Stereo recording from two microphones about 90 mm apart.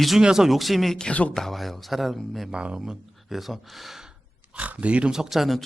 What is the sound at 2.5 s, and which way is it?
Speech, 10° right (ahead or behind).